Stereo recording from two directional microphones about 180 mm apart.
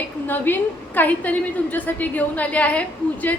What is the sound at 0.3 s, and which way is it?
A woman's voice, 10° left (ahead or behind).